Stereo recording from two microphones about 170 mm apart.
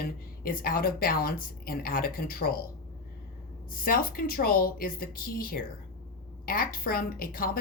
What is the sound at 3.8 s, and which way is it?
A woman's voice, 55° left (ahead or behind).